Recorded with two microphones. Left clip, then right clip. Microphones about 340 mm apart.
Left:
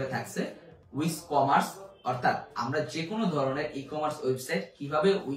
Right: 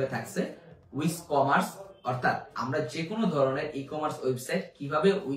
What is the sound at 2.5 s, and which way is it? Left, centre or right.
Speech, centre.